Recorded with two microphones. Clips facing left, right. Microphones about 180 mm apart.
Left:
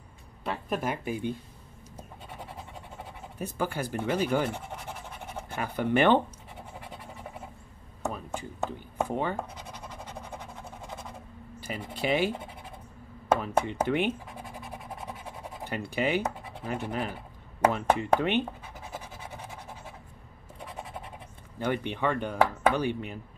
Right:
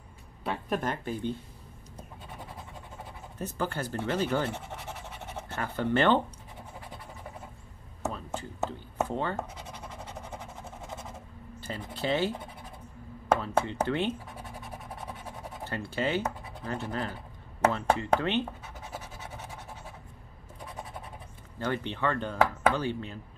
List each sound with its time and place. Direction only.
0.4 s speech: centre (ahead or behind)
3.3 s speech: 10° left (ahead or behind)
5.5 s speech: 15° left (ahead or behind)
8.1 s a sound: 15° left (ahead or behind)
9.0 s speech: 15° left (ahead or behind)
11.6 s speech: 10° left (ahead or behind)
13.4 s speech: 15° left (ahead or behind)
15.6 s speech: 15° left (ahead or behind)
21.5 s speech: 15° left (ahead or behind)